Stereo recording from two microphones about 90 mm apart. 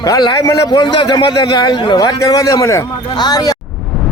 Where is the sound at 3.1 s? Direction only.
50° left (ahead or behind).